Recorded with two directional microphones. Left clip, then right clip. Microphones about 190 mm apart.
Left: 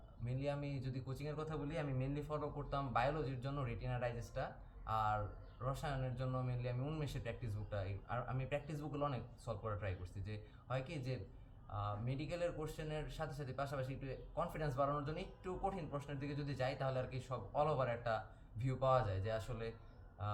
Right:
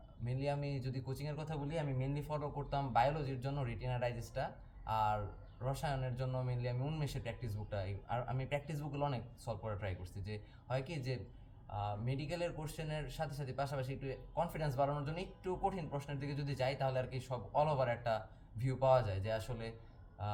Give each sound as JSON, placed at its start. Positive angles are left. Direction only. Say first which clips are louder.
{"t": 0.3, "sound": "speech", "louder": "right 3 dB", "side_deg": -15}